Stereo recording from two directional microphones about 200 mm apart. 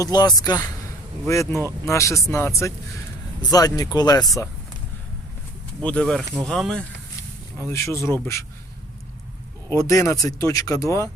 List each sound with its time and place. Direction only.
0.0 s speech: 20° left (ahead or behind)
5.8 s speech: 5° left (ahead or behind)
9.6 s speech: 15° left (ahead or behind)